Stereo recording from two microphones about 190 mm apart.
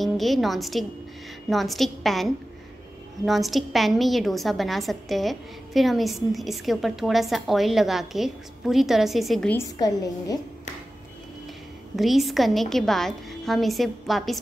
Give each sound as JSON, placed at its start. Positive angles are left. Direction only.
{"t": 0.0, "sound": "a woman's voice", "side_deg": 0}
{"t": 9.6, "sound": "a woman's voice", "side_deg": 20}
{"t": 12.0, "sound": "a woman's voice", "side_deg": 0}